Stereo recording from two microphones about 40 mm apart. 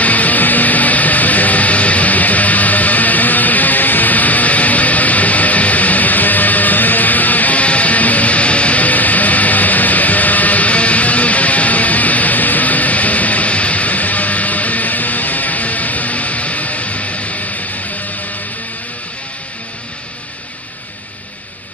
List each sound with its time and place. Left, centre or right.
0.0 s music: left